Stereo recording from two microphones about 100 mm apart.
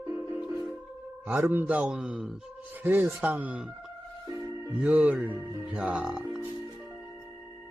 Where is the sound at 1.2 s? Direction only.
20° right (ahead or behind).